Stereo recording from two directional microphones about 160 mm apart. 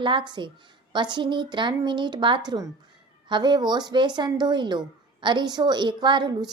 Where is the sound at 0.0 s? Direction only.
30° right (ahead or behind).